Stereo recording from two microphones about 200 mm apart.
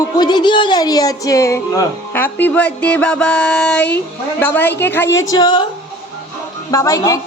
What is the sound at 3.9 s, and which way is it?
A woman's voice, 10° left (ahead or behind).